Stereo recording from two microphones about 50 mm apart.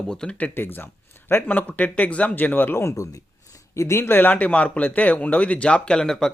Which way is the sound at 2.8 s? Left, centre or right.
Left.